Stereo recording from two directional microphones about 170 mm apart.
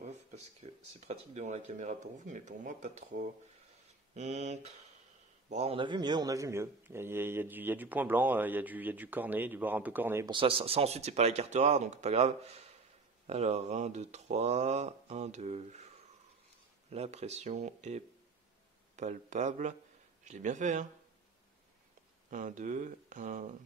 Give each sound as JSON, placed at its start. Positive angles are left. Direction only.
{"t": 0.0, "sound": "speech", "side_deg": -40}
{"t": 10.3, "sound": "speech", "side_deg": -35}
{"t": 16.9, "sound": "speech", "side_deg": -40}
{"t": 22.3, "sound": "speech", "side_deg": -45}